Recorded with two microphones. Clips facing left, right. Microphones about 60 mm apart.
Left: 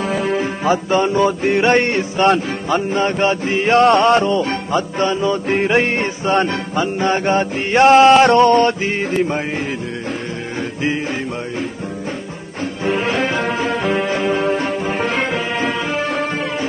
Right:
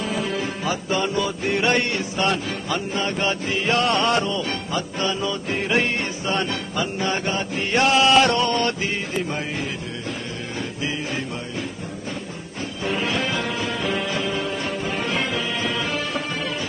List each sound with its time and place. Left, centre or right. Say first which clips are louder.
0.2 s music: left 7 dB; left
12.8 s music: left 6 dB; left